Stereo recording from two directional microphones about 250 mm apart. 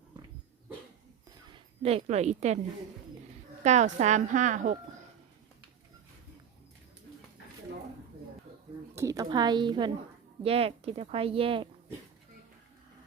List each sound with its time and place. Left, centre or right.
1.5 s speech: right
3.6 s speech: right
9.0 s a woman's voice: centre